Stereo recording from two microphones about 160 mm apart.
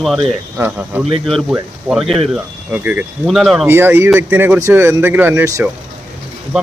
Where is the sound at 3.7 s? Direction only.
15° right (ahead or behind).